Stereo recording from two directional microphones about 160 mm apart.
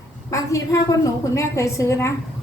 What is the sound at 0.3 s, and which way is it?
A woman's voice, 20° left (ahead or behind).